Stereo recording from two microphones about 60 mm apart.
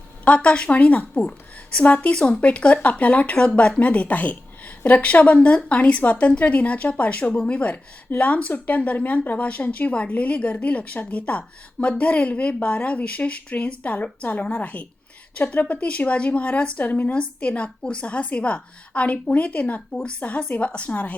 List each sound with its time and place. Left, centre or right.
0.3 s speech: centre